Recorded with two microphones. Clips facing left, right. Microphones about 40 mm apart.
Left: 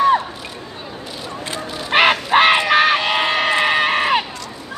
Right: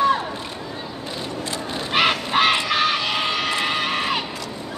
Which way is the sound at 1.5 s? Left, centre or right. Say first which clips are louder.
Left 5 dB; left.